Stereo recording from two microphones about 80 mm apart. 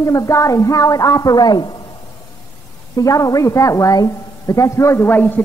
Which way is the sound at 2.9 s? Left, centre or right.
Left.